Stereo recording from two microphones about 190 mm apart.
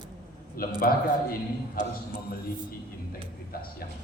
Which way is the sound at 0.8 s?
50° left (ahead or behind).